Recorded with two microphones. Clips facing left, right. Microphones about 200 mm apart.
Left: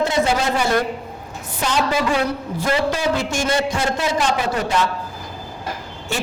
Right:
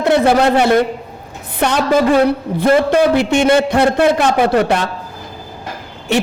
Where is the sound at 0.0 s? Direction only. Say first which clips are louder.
Right 7 dB; 60° right (ahead or behind).